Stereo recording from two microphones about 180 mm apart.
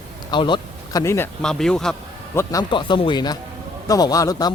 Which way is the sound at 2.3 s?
15° left (ahead or behind).